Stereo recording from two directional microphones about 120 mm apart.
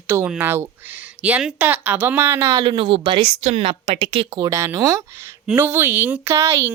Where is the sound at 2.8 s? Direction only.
50° right (ahead or behind).